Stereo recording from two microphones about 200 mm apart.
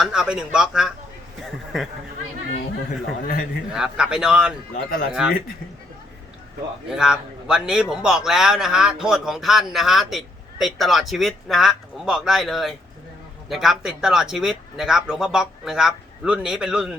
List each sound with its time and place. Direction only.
0.0 s a man's voice: 5° right (ahead or behind)
3.2 s a man's voice: 45° left (ahead or behind)
3.7 s a man's voice: 5° right (ahead or behind)
6.9 s a man's voice: 5° right (ahead or behind)